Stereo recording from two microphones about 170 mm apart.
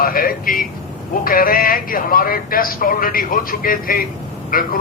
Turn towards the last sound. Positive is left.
turn(degrees=55)  # may be behind; listen again after turning